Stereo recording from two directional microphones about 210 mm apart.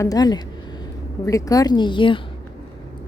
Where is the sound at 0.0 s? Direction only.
20° left (ahead or behind).